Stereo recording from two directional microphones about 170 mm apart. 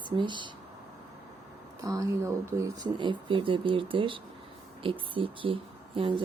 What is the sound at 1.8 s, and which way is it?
Speech, 20° right (ahead or behind).